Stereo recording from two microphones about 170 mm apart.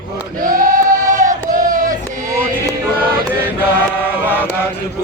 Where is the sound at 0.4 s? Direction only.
55° right (ahead or behind).